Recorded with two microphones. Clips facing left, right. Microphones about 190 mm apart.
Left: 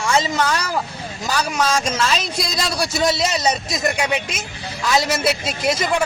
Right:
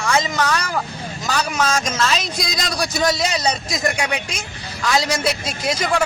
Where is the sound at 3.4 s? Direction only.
Centre (ahead or behind).